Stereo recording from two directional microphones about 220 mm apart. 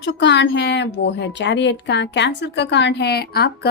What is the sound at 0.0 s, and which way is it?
A woman's voice, 50° left (ahead or behind).